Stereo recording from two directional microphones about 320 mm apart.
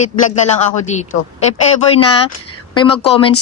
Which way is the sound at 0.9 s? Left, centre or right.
Left.